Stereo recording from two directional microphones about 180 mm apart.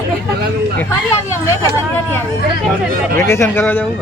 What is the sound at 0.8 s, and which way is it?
Speech, 15° left (ahead or behind).